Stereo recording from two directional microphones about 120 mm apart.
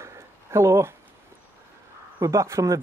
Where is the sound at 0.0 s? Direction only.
25° right (ahead or behind).